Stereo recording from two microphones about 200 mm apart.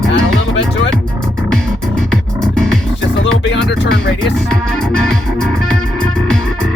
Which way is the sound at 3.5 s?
55° left (ahead or behind).